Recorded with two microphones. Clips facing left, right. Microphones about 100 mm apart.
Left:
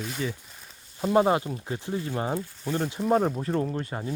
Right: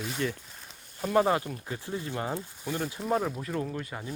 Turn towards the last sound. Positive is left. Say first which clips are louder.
# left 5 dB
turn(degrees=35)  # may be behind; listen again after turning